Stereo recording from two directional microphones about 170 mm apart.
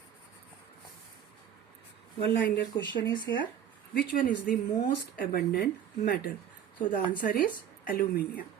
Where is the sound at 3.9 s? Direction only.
55° left (ahead or behind).